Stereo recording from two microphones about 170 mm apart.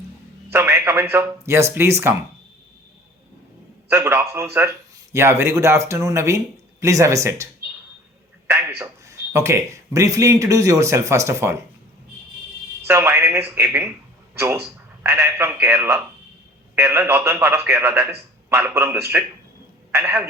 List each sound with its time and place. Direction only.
0.5 s speech: 15° right (ahead or behind)
3.8 s speech: 15° right (ahead or behind)
8.4 s a sound: 15° right (ahead or behind)
8.8 s speech: 15° right (ahead or behind)
12.9 s speech: 15° right (ahead or behind)